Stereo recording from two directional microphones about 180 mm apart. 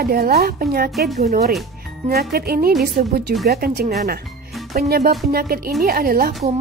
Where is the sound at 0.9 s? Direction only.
Centre (ahead or behind).